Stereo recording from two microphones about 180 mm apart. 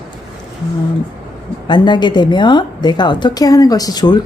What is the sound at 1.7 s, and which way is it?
A woman's voice, 25° left (ahead or behind).